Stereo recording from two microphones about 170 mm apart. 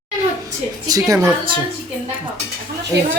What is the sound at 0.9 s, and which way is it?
Speech, 20° right (ahead or behind).